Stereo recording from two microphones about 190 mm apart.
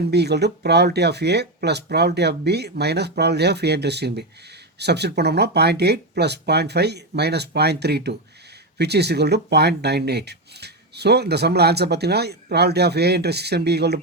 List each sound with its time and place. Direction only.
0.1 s speech: 60° right (ahead or behind)